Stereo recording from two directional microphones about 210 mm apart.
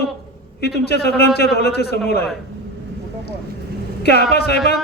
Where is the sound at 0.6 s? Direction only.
50° left (ahead or behind).